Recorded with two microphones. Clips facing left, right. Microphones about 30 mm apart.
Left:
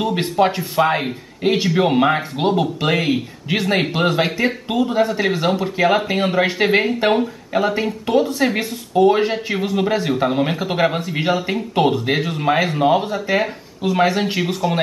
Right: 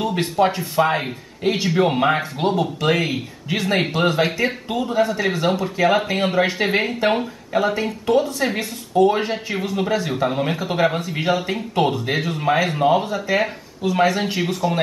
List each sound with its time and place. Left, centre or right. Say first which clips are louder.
0.0 s speech: left 2 dB; centre
2.3 s speech: left 2 dB; left
5.9 s speech: left 1 dB; centre